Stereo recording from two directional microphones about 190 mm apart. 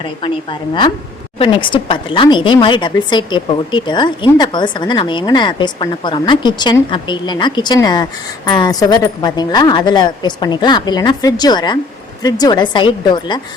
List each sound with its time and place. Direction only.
1.4 s a woman's voice: 25° left (ahead or behind)